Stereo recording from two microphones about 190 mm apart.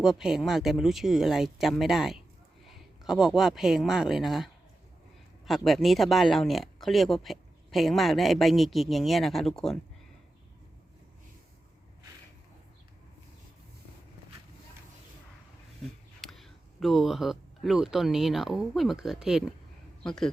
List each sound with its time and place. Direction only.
0.0 s speech: centre (ahead or behind)
5.5 s speech: centre (ahead or behind)
16.2 s speech: centre (ahead or behind)